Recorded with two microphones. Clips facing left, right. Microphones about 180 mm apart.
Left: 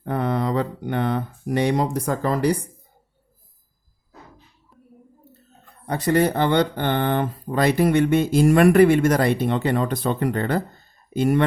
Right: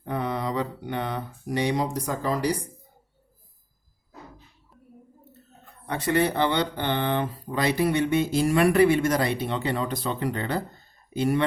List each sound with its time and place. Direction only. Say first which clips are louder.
0.0 s speech: left 5 dB; 55° left (ahead or behind)
5.8 s speech: left 4 dB; 40° left (ahead or behind)